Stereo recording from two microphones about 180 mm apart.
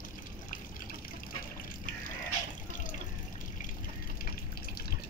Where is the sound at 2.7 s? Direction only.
45° left (ahead or behind).